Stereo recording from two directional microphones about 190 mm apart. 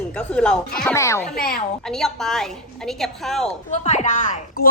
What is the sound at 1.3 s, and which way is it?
Speech, 50° left (ahead or behind).